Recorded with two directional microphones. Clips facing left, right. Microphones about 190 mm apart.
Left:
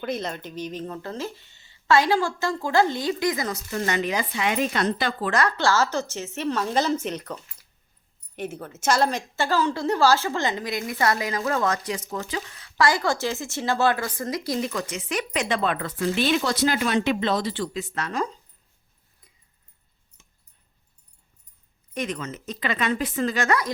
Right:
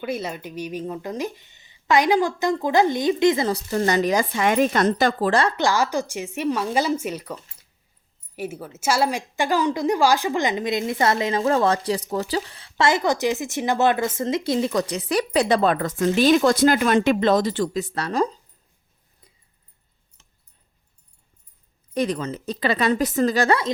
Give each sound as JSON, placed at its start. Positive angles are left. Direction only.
{"t": 0.0, "sound": "a woman's voice", "side_deg": -10}
{"t": 5.3, "sound": "a woman's voice", "side_deg": -25}
{"t": 8.4, "sound": "a woman's voice", "side_deg": -5}
{"t": 21.9, "sound": "a woman's voice", "side_deg": -35}